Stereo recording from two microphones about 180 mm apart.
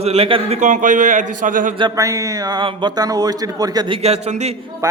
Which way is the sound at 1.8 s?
20° right (ahead or behind).